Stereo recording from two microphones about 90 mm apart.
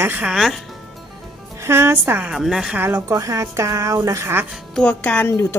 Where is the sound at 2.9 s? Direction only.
40° right (ahead or behind).